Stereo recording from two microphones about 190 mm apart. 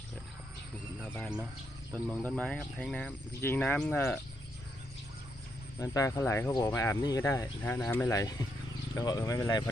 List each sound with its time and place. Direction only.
1.0 s speech: 10° left (ahead or behind)
5.8 s speech: 15° left (ahead or behind)